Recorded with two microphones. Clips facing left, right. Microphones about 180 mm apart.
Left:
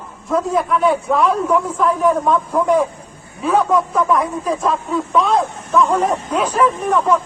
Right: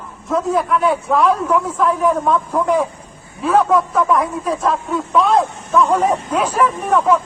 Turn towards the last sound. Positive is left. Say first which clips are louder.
# right 1 dB
turn(degrees=-10)  # may be behind; listen again after turning